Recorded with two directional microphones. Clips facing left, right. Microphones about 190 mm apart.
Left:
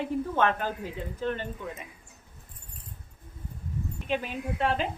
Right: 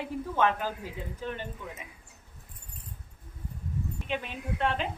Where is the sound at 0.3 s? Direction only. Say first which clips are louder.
Right 1 dB; 5° right (ahead or behind).